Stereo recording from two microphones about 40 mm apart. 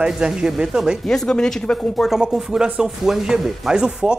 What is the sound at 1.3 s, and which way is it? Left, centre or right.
Speech, centre.